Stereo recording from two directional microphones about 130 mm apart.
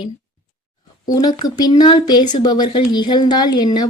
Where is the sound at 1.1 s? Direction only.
30° left (ahead or behind).